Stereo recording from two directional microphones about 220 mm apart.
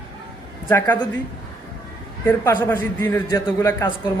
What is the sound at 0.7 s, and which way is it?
Speech, 20° left (ahead or behind).